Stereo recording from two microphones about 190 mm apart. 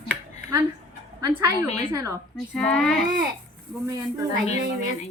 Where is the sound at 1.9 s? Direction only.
15° right (ahead or behind).